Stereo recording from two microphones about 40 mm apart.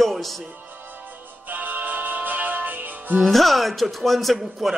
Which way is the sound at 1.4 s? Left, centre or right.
Right.